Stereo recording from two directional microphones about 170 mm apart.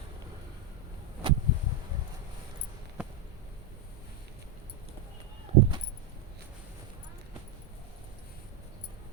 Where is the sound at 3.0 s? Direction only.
5° right (ahead or behind).